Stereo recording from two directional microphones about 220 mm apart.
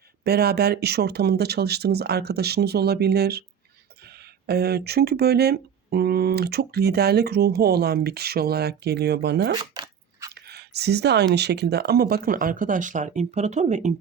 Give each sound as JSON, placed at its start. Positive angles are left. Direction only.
{"t": 0.3, "sound": "speech", "side_deg": -45}
{"t": 4.4, "sound": "speech", "side_deg": -45}
{"t": 9.7, "sound": "biting", "side_deg": -20}
{"t": 10.3, "sound": "speech", "side_deg": -45}